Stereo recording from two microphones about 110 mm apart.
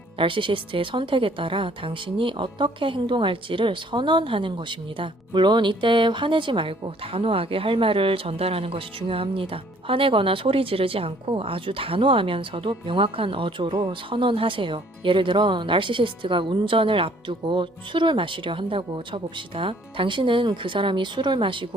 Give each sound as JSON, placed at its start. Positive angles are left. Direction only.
{"t": 0.2, "sound": "a woman's voice", "side_deg": -50}